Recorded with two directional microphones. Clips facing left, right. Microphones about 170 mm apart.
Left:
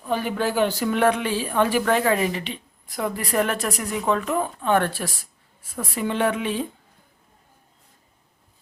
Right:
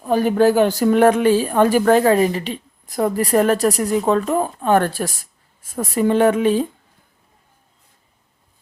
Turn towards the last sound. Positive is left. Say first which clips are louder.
# right 8 dB
turn(degrees=-40)  # may be behind; listen again after turning